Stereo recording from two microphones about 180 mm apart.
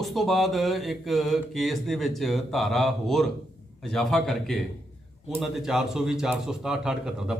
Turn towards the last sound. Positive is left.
turn(degrees=-5)  # may be behind; listen again after turning